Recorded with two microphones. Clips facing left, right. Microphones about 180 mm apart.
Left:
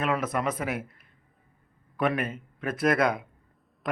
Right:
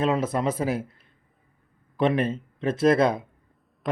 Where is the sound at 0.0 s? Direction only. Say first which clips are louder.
Right 4 dB; 25° right (ahead or behind).